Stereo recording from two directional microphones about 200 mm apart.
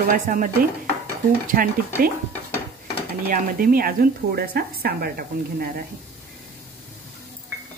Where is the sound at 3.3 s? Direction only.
45° right (ahead or behind).